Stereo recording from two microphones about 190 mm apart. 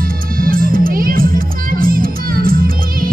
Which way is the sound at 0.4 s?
50° right (ahead or behind).